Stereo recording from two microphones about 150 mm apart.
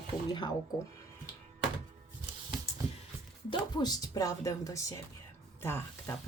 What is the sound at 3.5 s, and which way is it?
Speech, 30° left (ahead or behind).